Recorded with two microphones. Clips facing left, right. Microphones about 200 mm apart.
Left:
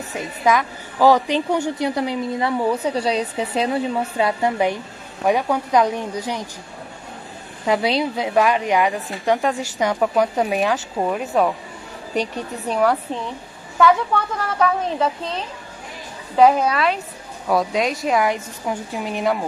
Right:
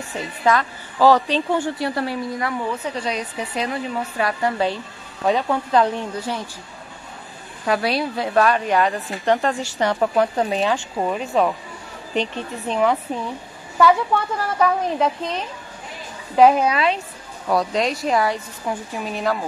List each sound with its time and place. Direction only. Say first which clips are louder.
0.5 s a woman's voice: left 1 dB; 15° left (ahead or behind)
7.6 s a woman's voice: left 2 dB; 20° left (ahead or behind)
8.9 s a woman's voice: even; centre (ahead or behind)
13.7 s a woman's voice: even; centre (ahead or behind)
17.5 s a woman's voice: left 1 dB; centre (ahead or behind)
18.2 s a woman's voice: left 1 dB; 15° left (ahead or behind)